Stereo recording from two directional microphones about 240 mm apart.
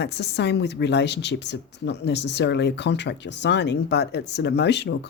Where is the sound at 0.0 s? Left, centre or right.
Left.